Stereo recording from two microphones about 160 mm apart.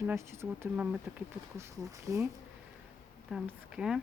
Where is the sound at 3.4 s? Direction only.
5° right (ahead or behind).